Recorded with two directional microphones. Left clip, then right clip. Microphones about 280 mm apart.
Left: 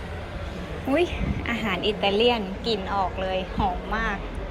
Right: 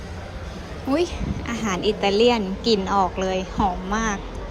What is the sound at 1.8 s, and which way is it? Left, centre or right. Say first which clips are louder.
Speech: right 4 dB; right.